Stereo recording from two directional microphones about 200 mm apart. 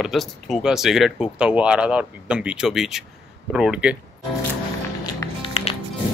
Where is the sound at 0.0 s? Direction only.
Centre (ahead or behind).